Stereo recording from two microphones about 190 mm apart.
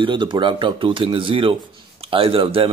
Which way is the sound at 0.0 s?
25° right (ahead or behind).